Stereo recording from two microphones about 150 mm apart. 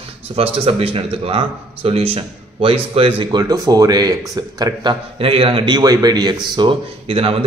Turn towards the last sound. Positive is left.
turn(degrees=-40)  # may be behind; listen again after turning